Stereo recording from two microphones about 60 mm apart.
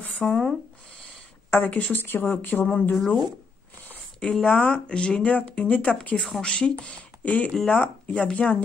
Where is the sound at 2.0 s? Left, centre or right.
Left.